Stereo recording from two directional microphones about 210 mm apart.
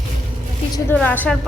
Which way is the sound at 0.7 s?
5° left (ahead or behind).